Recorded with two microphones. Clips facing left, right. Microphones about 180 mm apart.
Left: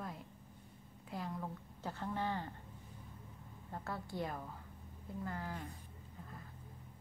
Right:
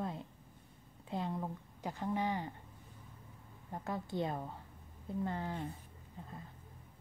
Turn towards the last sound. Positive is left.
turn(degrees=-25)  # may be behind; listen again after turning